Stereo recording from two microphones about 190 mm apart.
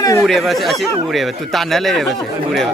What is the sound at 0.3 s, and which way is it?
Speech, centre (ahead or behind).